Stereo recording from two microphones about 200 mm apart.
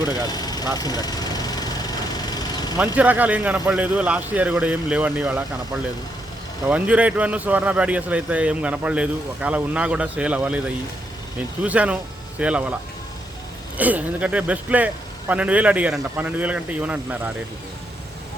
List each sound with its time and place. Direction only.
0.3 s speech: 20° left (ahead or behind)
0.8 s lawn mower: 20° left (ahead or behind)
2.7 s speech: 5° right (ahead or behind)
6.7 s speech: 5° right (ahead or behind)
11.6 s speech: 5° right (ahead or behind)
13.7 s speech: 10° right (ahead or behind)